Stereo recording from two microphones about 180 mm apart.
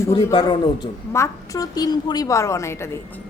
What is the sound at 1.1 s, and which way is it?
A woman's voice, 15° left (ahead or behind).